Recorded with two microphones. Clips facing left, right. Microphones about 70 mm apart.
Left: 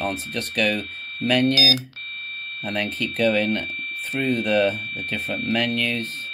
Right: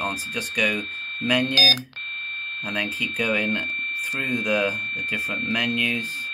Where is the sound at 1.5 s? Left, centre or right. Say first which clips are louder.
Left 1 dB; right.